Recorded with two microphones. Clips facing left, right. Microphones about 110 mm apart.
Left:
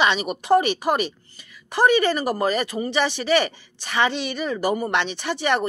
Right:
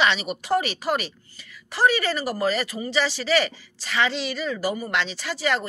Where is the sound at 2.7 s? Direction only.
30° left (ahead or behind).